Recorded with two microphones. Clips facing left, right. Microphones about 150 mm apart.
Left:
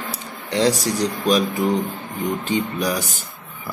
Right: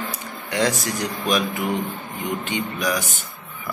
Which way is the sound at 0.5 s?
35° left (ahead or behind).